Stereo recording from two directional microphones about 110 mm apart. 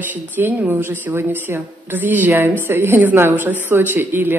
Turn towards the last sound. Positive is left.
turn(degrees=-20)  # may be behind; listen again after turning